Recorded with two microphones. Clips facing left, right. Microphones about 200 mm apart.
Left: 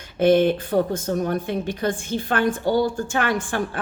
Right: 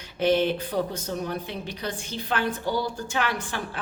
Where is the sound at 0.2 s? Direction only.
50° left (ahead or behind).